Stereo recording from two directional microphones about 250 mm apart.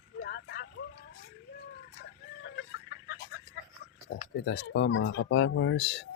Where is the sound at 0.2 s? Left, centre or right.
Left.